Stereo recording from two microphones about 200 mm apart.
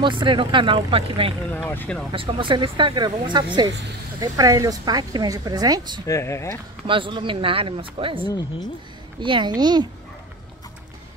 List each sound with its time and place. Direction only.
0.0 s speech: 25° right (ahead or behind)
1.7 s speech: 5° left (ahead or behind)
2.1 s speech: 25° right (ahead or behind)
6.0 s speech: 15° left (ahead or behind)
6.9 s speech: 25° right (ahead or behind)
8.3 s speech: 20° left (ahead or behind)
9.2 s speech: 25° right (ahead or behind)